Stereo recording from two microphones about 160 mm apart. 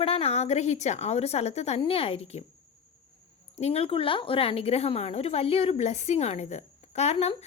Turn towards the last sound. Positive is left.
turn(degrees=40)  # may be behind; listen again after turning